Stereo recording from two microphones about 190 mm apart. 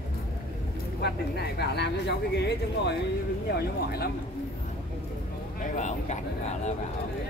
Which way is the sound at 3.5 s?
55° left (ahead or behind).